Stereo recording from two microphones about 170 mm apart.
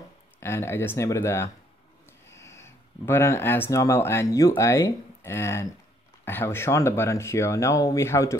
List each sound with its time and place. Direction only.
0.4 s speech: 15° left (ahead or behind)